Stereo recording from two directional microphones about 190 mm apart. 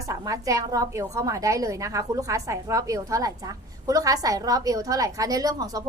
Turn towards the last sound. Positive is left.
turn(degrees=-20)  # may be behind; listen again after turning